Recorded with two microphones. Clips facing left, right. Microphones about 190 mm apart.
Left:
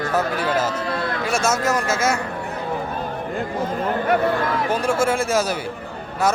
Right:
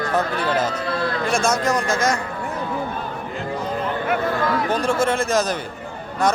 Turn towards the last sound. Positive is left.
turn(degrees=10)  # may be behind; listen again after turning